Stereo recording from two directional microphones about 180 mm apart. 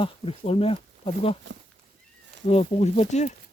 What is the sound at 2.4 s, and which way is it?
Speech, 35° left (ahead or behind).